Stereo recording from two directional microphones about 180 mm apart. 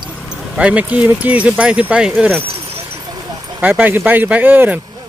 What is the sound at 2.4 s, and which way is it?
Clip-clop, 30° right (ahead or behind).